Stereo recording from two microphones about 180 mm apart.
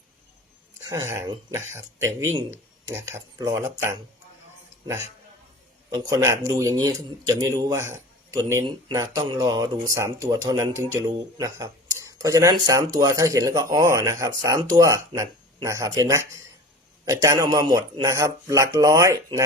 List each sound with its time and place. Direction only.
0.9 s speech: 15° right (ahead or behind)
5.9 s speech: 20° right (ahead or behind)